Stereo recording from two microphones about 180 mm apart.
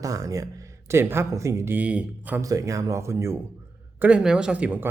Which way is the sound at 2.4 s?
20° right (ahead or behind).